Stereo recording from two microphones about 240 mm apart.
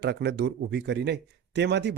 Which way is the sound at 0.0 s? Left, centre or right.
Right.